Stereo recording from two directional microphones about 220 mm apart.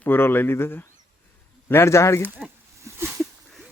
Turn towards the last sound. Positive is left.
turn(degrees=0)  # may be behind; listen again after turning